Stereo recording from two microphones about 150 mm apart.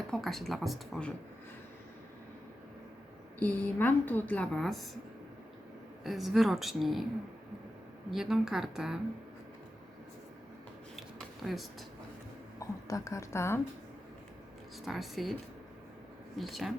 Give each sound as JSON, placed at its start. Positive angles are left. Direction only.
{"t": 0.1, "sound": "a woman's voice", "side_deg": 0}
{"t": 3.4, "sound": "a woman's voice", "side_deg": 10}
{"t": 6.0, "sound": "a woman's voice", "side_deg": 0}
{"t": 8.1, "sound": "a woman's voice", "side_deg": -5}
{"t": 10.9, "sound": "a sound", "side_deg": 0}
{"t": 12.5, "sound": "a woman's voice", "side_deg": 20}
{"t": 14.8, "sound": "a woman's voice", "side_deg": 0}
{"t": 16.4, "sound": "a woman's voice", "side_deg": 0}